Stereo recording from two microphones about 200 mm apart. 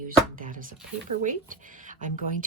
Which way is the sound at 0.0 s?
40° right (ahead or behind).